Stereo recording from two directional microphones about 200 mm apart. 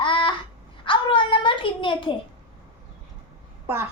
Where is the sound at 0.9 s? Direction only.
25° left (ahead or behind).